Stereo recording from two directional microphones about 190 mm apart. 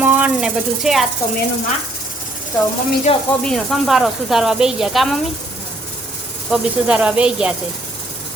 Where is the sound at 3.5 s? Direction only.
Centre (ahead or behind).